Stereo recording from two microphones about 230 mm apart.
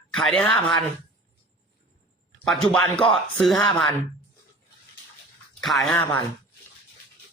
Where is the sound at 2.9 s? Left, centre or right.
Left.